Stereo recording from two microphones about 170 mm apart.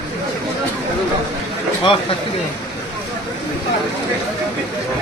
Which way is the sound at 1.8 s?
35° left (ahead or behind).